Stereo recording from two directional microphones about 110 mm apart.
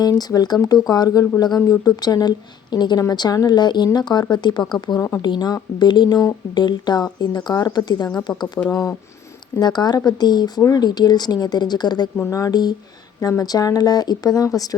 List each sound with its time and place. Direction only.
0.0 s speech: 35° left (ahead or behind)
4.9 s speech: 25° left (ahead or behind)
5.2 s speech: 40° left (ahead or behind)
8.6 s speech: 15° left (ahead or behind)
9.6 s speech: 40° left (ahead or behind)